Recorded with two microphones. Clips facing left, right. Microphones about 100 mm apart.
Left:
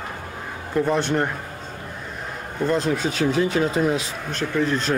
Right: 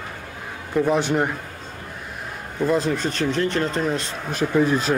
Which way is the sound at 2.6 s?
Centre (ahead or behind).